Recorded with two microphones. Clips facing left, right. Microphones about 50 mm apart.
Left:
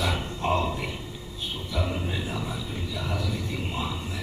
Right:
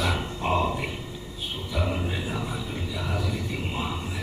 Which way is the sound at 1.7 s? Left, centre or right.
Centre.